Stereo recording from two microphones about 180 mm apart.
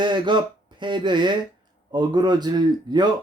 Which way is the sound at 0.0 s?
25° right (ahead or behind).